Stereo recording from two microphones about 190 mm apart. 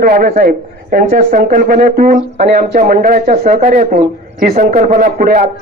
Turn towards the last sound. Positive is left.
turn(degrees=-45)  # may be behind; listen again after turning